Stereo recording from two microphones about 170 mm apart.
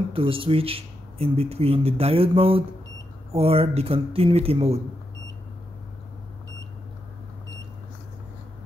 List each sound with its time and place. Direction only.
0.1 s speech: 30° right (ahead or behind)